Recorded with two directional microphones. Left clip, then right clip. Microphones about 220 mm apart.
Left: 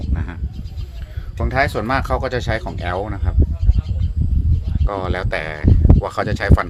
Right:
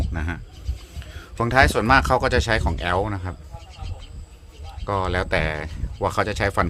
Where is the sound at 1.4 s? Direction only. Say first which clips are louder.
Right 1 dB; 10° right (ahead or behind).